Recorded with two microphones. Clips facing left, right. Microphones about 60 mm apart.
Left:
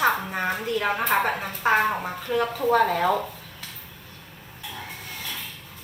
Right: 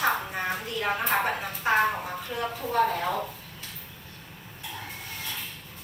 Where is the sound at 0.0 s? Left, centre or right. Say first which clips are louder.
Left 4 dB; left.